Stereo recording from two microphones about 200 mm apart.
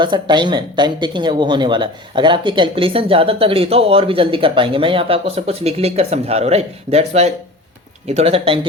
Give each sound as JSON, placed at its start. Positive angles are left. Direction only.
{"t": 0.0, "sound": "a woman's voice", "side_deg": -25}